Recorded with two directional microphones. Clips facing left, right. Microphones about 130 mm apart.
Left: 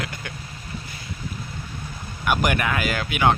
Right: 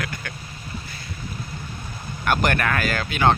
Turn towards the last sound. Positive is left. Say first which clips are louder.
# even
turn(degrees=10)  # may be behind; listen again after turning